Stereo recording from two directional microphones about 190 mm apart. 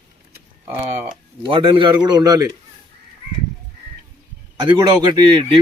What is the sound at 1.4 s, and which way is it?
A man's voice, 25° right (ahead or behind).